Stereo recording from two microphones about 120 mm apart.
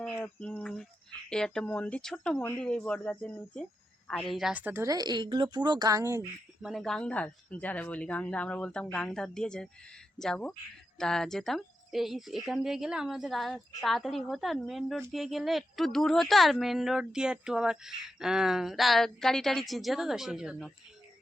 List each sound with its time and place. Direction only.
0.0 s a woman's voice: 10° left (ahead or behind)
4.5 s a woman's voice: 15° right (ahead or behind)
4.9 s speech: 35° right (ahead or behind)
6.6 s a woman's voice: centre (ahead or behind)